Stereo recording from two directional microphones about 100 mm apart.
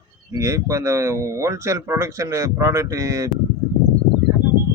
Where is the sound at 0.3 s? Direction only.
30° right (ahead or behind).